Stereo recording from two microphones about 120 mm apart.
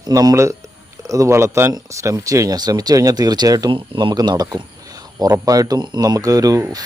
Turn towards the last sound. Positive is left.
turn(degrees=-30)  # may be behind; listen again after turning